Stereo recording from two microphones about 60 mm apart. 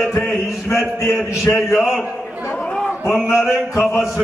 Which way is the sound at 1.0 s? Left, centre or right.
Left.